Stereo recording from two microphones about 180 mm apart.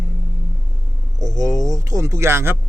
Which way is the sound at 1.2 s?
20° right (ahead or behind).